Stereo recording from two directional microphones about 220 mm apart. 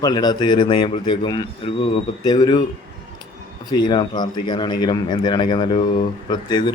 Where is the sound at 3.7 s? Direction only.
20° left (ahead or behind).